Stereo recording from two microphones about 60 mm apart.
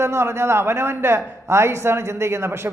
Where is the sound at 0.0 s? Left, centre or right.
Right.